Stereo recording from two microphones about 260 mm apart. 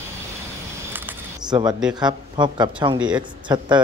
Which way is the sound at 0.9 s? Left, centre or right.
Centre.